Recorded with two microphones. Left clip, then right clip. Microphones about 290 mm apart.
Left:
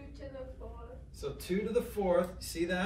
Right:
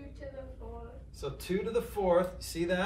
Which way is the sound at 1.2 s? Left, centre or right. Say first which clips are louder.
Right 1 dB; centre.